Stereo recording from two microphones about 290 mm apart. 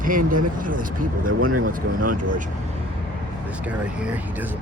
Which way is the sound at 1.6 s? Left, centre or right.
Right.